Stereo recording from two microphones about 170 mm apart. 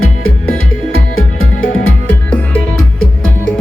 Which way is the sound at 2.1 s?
10° left (ahead or behind).